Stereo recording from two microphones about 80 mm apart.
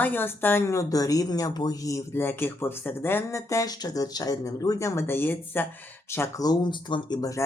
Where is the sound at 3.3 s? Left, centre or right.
Left.